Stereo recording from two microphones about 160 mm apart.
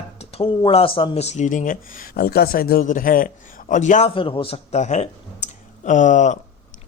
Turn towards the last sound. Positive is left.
turn(degrees=50)  # may be behind; listen again after turning